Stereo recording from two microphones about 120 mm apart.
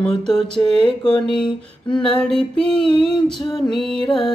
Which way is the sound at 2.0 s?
5° left (ahead or behind).